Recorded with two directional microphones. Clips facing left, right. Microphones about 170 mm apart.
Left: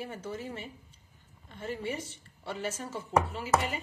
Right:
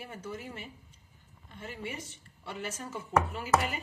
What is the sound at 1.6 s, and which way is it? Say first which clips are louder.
Speech: left 5 dB; 30° left (ahead or behind).